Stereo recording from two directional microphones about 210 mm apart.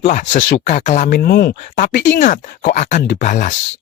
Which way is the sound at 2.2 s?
40° left (ahead or behind).